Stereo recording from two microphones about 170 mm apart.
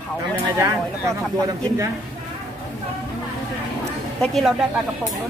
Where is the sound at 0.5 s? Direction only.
15° right (ahead or behind).